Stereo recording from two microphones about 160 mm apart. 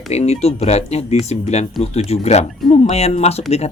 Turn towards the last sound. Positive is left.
turn(degrees=40)  # may be behind; listen again after turning